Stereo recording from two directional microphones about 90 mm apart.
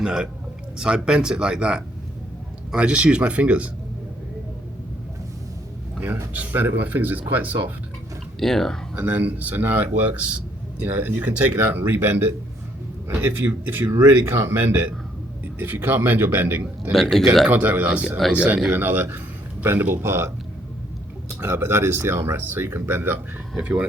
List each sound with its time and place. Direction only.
0.0 s a man's voice: 5° right (ahead or behind)
6.3 s speech: 20° right (ahead or behind)
8.4 s speech: 5° left (ahead or behind)
9.0 s speech: 15° right (ahead or behind)
16.9 s speech: 5° left (ahead or behind)
17.5 s speech: 20° right (ahead or behind)
18.7 s speech: 20° right (ahead or behind)
23.6 s speech: 15° right (ahead or behind)